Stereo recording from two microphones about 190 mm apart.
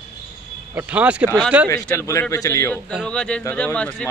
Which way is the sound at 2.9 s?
5° left (ahead or behind).